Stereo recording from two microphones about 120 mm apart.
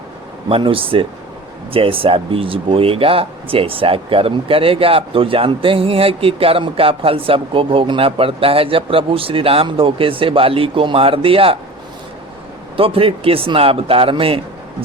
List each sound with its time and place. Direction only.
0.4 s speech: 50° right (ahead or behind)
12.7 s speech: 50° right (ahead or behind)